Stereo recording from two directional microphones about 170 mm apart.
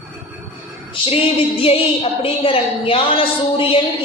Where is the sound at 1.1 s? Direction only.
35° left (ahead or behind).